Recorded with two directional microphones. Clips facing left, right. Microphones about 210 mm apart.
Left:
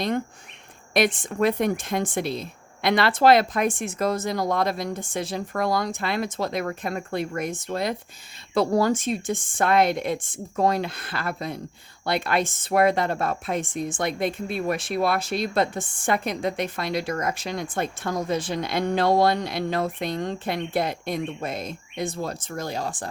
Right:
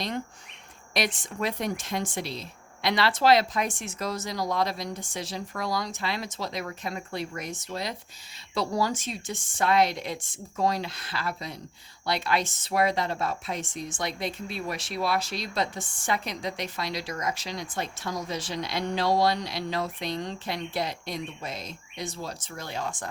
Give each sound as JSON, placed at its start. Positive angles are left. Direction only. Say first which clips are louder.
{"t": 0.9, "sound": "speech", "louder": "left 8 dB", "side_deg": 55}